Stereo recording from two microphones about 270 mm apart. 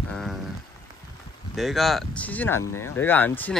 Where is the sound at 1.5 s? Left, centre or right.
Centre.